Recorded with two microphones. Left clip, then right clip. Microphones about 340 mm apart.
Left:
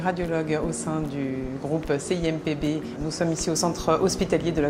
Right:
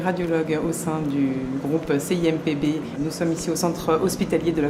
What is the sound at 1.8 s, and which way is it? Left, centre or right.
Speech, left.